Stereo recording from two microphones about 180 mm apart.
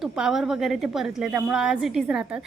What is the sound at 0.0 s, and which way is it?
A woman's voice, centre (ahead or behind).